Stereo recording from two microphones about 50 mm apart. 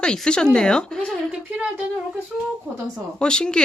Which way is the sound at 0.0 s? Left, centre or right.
Centre.